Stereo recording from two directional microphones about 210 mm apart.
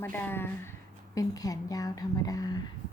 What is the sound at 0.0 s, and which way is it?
Speech, 10° left (ahead or behind).